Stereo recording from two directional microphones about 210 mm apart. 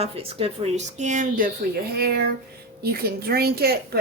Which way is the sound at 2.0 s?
50° right (ahead or behind).